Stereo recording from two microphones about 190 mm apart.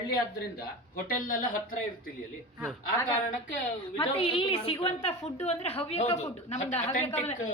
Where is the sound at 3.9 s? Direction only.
25° left (ahead or behind).